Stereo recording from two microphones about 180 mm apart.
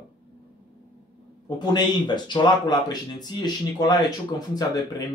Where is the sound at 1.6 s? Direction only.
25° left (ahead or behind).